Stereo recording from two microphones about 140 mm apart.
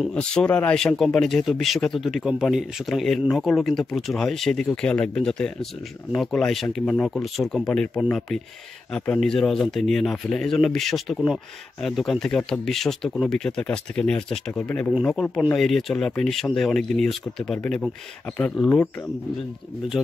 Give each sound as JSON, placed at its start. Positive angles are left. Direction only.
{"t": 0.0, "sound": "speech", "side_deg": 5}